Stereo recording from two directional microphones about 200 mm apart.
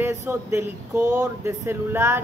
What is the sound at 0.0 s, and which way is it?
Speech, 15° right (ahead or behind).